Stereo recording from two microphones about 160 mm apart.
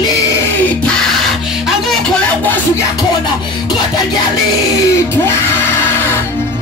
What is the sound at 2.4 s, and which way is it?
Music, 10° left (ahead or behind).